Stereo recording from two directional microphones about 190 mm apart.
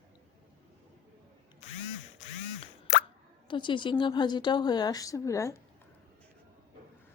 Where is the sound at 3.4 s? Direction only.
25° left (ahead or behind).